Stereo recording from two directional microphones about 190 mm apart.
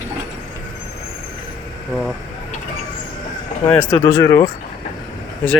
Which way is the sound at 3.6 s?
10° left (ahead or behind).